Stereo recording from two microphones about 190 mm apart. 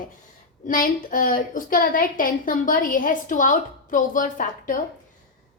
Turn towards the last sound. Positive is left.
turn(degrees=45)  # may be behind; listen again after turning